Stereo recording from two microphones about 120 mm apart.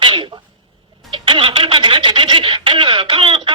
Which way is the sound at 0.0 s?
45° right (ahead or behind).